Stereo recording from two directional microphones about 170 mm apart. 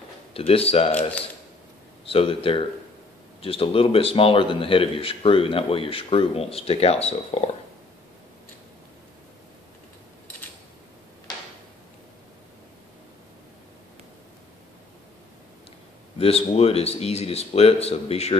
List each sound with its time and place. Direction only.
0.3 s a man's voice: 35° left (ahead or behind)
16.2 s a man's voice: 35° left (ahead or behind)